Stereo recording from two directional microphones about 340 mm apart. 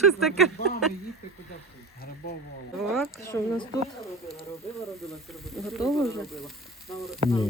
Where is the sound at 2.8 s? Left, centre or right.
Centre.